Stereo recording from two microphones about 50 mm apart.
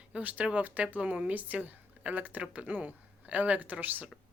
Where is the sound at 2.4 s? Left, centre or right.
Right.